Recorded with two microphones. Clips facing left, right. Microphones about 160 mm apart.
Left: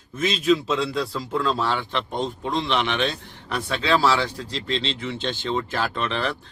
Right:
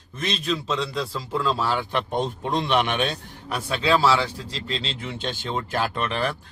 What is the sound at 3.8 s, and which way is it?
A man's voice, centre (ahead or behind).